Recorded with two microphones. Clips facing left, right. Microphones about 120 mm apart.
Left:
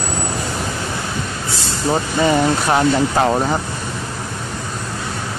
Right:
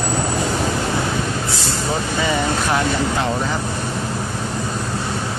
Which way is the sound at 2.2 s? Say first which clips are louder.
Left 5 dB; 40° left (ahead or behind).